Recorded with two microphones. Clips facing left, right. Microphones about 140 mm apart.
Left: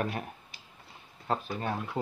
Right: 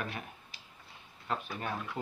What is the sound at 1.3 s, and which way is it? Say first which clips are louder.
Speech: left 5 dB; 30° left (ahead or behind).